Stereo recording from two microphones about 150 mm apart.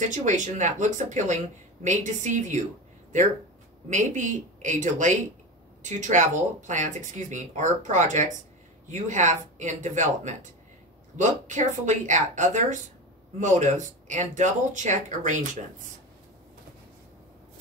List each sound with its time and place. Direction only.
0.0 s speech: 55° right (ahead or behind)
3.9 s speech: 55° right (ahead or behind)